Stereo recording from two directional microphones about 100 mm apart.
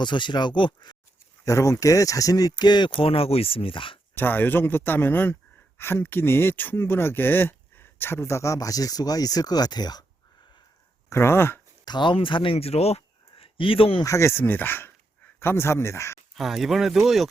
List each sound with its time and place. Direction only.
0.0 s speech: 50° left (ahead or behind)
1.5 s speech: 30° left (ahead or behind); by 3.9 s 60° left (ahead or behind)
4.1 s speech: 20° left (ahead or behind); by 10.0 s 40° left (ahead or behind)
11.1 s speech: 25° left (ahead or behind)
11.9 s speech: 50° left (ahead or behind); by 13.0 s 90° left
13.4 s speech: 65° left (ahead or behind)
14.0 s speech: 30° left (ahead or behind)
16.3 s speech: centre (ahead or behind)